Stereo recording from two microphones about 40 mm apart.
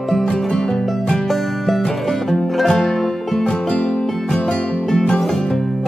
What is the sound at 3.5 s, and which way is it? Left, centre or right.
Music, left.